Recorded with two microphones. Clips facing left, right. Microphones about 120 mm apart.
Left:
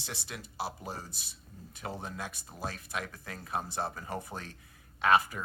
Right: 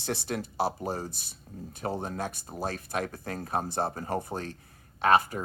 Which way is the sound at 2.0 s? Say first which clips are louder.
Right 7 dB; 40° right (ahead or behind).